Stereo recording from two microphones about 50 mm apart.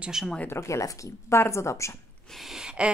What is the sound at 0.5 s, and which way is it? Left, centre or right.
Speech, left.